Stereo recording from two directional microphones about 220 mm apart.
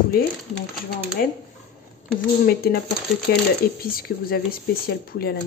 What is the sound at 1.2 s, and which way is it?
Speech, 40° left (ahead or behind).